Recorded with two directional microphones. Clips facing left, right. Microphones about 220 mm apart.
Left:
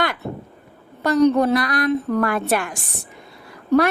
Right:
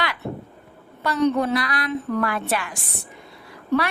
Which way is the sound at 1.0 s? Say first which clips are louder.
Left 5 dB; 45° left (ahead or behind).